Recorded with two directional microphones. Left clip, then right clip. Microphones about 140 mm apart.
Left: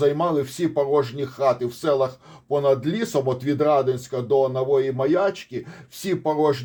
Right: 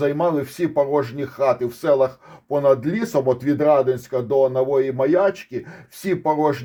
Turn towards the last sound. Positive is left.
turn(degrees=-45)  # may be behind; listen again after turning